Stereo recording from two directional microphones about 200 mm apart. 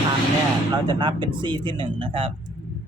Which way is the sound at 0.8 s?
25° right (ahead or behind).